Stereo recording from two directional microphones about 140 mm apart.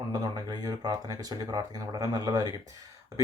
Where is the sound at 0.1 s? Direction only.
25° right (ahead or behind).